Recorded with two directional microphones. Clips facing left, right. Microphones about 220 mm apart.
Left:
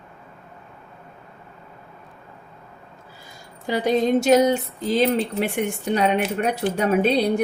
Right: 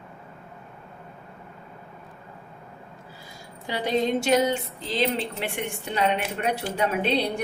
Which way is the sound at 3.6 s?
45° left (ahead or behind).